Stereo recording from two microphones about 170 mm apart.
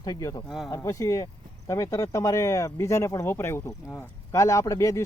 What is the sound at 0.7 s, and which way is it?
Speech, 20° left (ahead or behind).